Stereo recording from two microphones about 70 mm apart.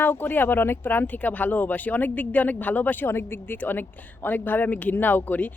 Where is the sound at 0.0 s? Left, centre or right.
Left.